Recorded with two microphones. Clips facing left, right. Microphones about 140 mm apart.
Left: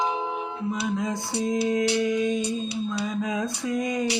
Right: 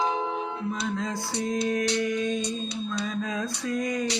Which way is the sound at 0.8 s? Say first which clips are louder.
Left 2 dB; 20° left (ahead or behind).